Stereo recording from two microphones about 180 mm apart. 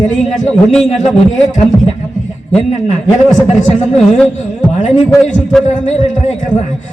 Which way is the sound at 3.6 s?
40° left (ahead or behind).